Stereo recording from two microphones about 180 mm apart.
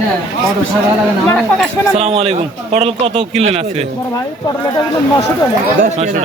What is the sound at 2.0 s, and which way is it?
Speech, 35° right (ahead or behind).